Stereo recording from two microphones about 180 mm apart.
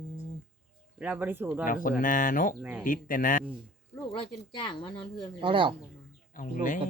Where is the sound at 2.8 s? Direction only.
50° left (ahead or behind).